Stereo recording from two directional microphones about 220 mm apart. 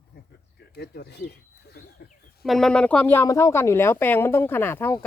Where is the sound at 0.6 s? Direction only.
45° left (ahead or behind).